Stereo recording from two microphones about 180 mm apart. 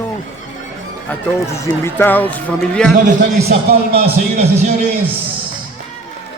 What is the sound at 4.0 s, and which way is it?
Speech, 35° right (ahead or behind).